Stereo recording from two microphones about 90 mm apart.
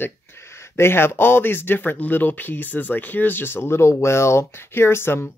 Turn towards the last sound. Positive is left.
turn(degrees=30)  # may be behind; listen again after turning